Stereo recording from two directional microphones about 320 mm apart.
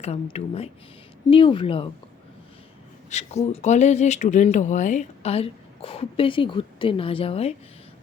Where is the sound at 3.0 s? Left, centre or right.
Left.